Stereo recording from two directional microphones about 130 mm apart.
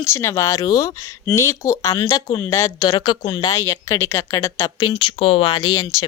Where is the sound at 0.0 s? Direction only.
20° left (ahead or behind).